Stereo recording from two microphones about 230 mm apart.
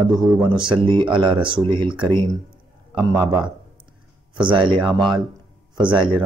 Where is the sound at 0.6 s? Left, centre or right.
Right.